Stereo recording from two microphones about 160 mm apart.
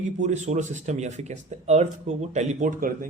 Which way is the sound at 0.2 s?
45° right (ahead or behind).